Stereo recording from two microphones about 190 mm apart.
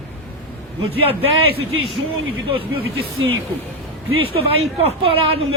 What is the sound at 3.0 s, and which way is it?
Speech, 90° right.